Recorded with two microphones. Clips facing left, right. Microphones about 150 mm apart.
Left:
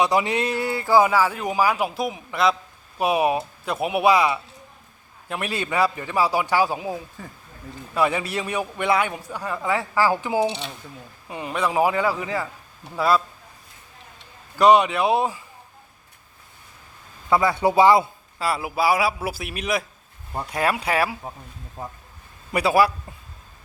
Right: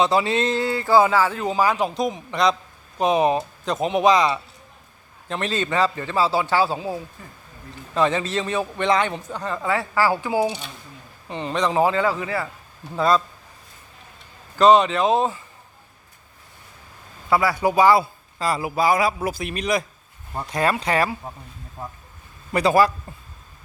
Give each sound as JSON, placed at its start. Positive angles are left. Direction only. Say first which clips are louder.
{"t": 0.0, "sound": "speech", "louder": "right 1 dB", "side_deg": 15}
{"t": 7.9, "sound": "speech", "louder": "right 2 dB", "side_deg": 10}
{"t": 11.3, "sound": "speech", "louder": "right 2 dB", "side_deg": 10}
{"t": 14.6, "sound": "speech", "louder": "right 1 dB", "side_deg": 10}
{"t": 17.6, "sound": "speech", "louder": "left 1 dB", "side_deg": 25}
{"t": 18.3, "sound": "speech", "louder": "right 1 dB", "side_deg": 5}
{"t": 22.5, "sound": "speech", "louder": "right 1 dB", "side_deg": 10}